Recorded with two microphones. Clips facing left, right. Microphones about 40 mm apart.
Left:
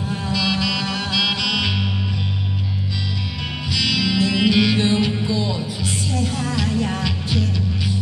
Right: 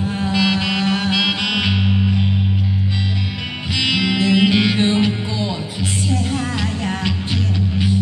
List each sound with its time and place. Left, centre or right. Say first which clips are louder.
0.3 s music: right 2 dB; right
3.8 s music: right 2 dB; right